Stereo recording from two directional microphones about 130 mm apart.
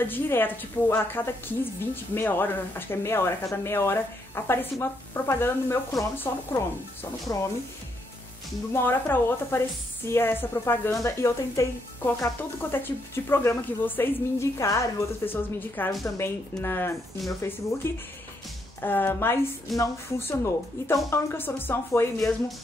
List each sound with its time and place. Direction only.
0.0 s a woman's voice: 15° left (ahead or behind)
8.7 s a woman's voice: 15° left (ahead or behind)